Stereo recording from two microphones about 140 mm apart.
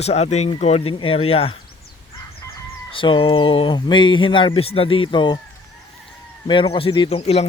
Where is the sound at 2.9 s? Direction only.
40° left (ahead or behind).